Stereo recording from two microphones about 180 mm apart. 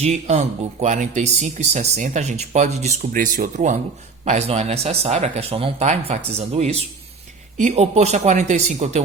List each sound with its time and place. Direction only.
0.0 s speech: 40° right (ahead or behind)